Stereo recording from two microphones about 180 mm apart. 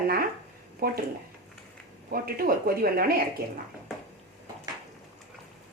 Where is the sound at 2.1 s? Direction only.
55° right (ahead or behind).